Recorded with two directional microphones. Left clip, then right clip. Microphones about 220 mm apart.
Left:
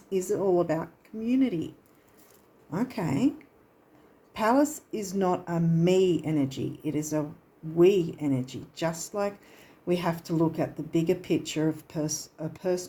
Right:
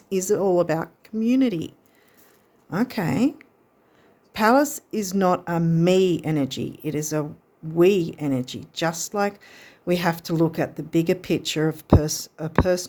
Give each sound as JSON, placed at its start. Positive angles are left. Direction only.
{"t": 0.1, "sound": "speech", "side_deg": -45}